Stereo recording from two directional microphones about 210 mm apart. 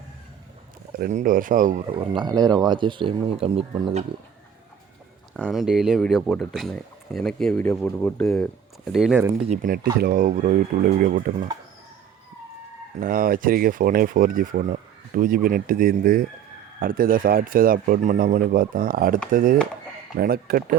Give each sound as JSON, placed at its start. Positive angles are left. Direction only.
{"t": 0.9, "sound": "speech", "side_deg": -40}
{"t": 1.9, "sound": "speech", "side_deg": -20}
{"t": 5.4, "sound": "speech", "side_deg": 0}
{"t": 9.5, "sound": "speech", "side_deg": -40}
{"t": 13.0, "sound": "a man's voice", "side_deg": -40}